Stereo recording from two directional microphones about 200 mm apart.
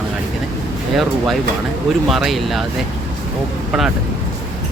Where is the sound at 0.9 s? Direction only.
Centre (ahead or behind).